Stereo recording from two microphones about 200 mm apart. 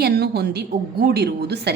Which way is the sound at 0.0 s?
55° right (ahead or behind).